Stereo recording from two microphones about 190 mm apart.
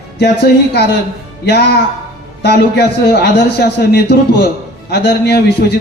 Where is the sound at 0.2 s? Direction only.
60° left (ahead or behind).